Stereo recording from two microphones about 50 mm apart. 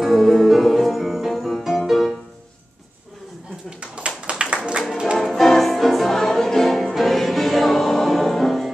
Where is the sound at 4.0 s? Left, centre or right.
Right.